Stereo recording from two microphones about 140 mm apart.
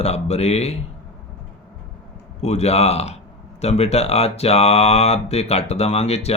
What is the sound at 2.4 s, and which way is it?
A man's voice, 50° left (ahead or behind).